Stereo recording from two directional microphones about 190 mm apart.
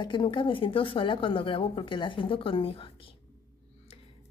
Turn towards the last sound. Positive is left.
turn(degrees=30)  # may be behind; listen again after turning